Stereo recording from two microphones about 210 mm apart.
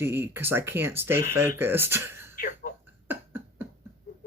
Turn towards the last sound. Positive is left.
turn(degrees=-10)  # may be behind; listen again after turning